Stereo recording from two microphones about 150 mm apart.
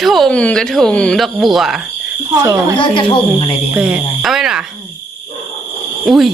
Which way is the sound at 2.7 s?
35° left (ahead or behind).